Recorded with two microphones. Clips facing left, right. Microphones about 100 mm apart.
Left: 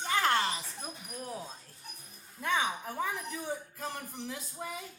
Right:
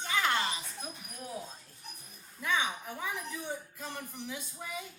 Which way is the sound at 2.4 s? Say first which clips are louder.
Left 1 dB; 40° left (ahead or behind).